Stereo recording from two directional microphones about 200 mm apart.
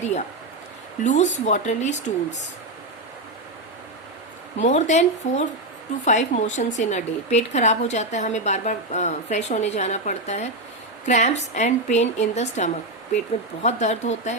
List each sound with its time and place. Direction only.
1.0 s a woman's voice: 35° left (ahead or behind)
4.5 s a woman's voice: 35° left (ahead or behind)